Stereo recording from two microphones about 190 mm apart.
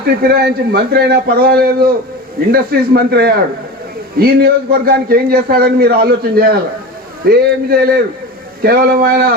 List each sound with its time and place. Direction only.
0.0 s a man's voice: 55° right (ahead or behind)